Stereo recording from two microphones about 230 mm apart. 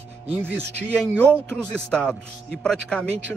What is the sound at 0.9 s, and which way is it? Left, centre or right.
Speech, centre.